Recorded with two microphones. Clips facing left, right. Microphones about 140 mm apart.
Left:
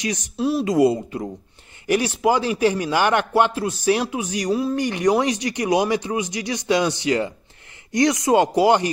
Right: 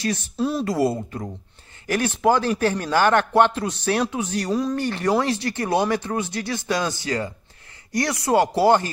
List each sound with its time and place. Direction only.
0.0 s speech: 15° left (ahead or behind)